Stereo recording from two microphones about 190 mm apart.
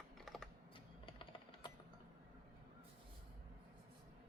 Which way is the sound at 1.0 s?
25° left (ahead or behind).